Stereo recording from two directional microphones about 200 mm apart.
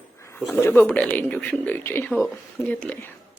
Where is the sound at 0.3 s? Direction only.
10° left (ahead or behind).